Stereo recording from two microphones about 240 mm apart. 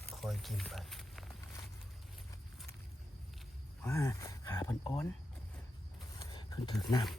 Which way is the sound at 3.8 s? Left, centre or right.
Centre.